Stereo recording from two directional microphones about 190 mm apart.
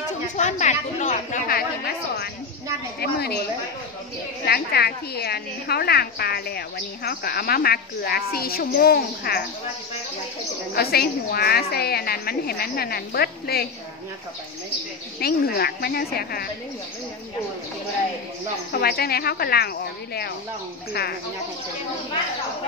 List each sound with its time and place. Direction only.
0.4 s a woman's voice: 40° left (ahead or behind); by 3.3 s 55° left (ahead or behind)
4.5 s a woman's voice: 55° left (ahead or behind)
10.7 s a woman's voice: 55° left (ahead or behind)
15.1 s a woman's voice: 55° left (ahead or behind)
18.7 s a woman's voice: 55° left (ahead or behind)
20.9 s a woman's voice: 55° left (ahead or behind)